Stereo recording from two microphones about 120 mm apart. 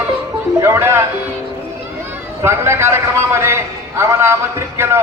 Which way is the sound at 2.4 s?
20° right (ahead or behind).